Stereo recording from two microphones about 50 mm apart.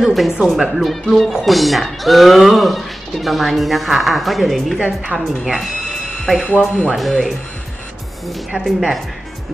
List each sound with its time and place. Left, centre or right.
0.0 s speech: centre
4.7 s a woman's voice: right
5.1 s speech: centre
8.5 s speech: centre